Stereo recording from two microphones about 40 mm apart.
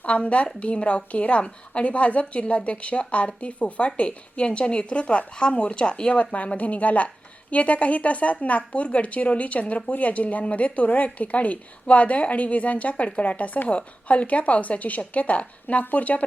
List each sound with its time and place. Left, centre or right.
0.0 s a woman's voice: left
6.1 s a woman's voice: left
15.8 s speech: left